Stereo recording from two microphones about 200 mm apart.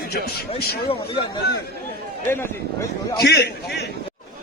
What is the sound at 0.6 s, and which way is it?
Speech, 50° left (ahead or behind).